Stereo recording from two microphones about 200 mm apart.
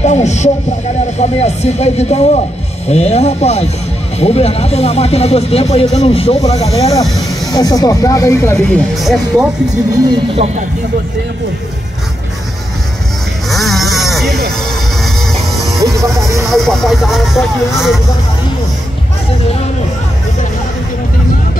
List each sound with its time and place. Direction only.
0.0 s a sound: 35° left (ahead or behind)
1.1 s speech: 35° left (ahead or behind)
7.5 s speech: 20° left (ahead or behind)
8.5 s speech: centre (ahead or behind)
10.3 s speech: 30° right (ahead or behind)
13.5 s sheep: centre (ahead or behind)
15.5 s music: centre (ahead or behind)
15.8 s music: 15° right (ahead or behind)
16.5 s speech: centre (ahead or behind)